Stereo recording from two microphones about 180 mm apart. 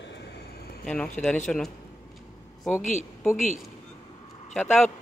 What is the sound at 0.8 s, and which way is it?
A man's voice, 5° left (ahead or behind).